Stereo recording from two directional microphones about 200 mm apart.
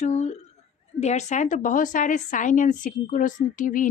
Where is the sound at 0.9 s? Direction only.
35° left (ahead or behind).